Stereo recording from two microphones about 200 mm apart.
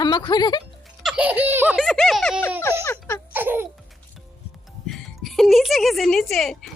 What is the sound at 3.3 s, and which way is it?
Baby laughter, 10° right (ahead or behind).